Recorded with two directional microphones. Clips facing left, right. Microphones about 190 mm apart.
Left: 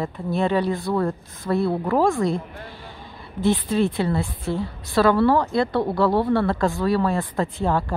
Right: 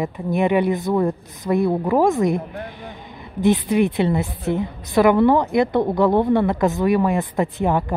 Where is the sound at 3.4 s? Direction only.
15° right (ahead or behind).